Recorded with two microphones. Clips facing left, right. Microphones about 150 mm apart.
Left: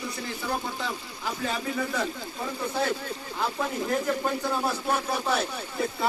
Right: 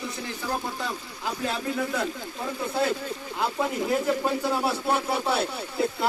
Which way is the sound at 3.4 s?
10° right (ahead or behind).